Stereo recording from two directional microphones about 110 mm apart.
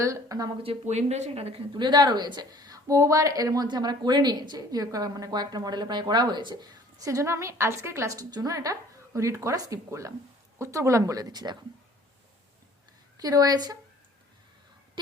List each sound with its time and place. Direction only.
0.0 s speech: 30° right (ahead or behind)
0.6 s speech: 75° right (ahead or behind)
1.7 s speech: 40° right (ahead or behind)
13.1 s speech: 35° right (ahead or behind)